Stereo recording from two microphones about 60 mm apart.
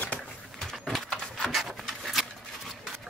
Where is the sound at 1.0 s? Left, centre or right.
Centre.